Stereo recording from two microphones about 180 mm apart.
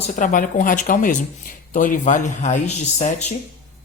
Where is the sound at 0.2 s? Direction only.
45° left (ahead or behind).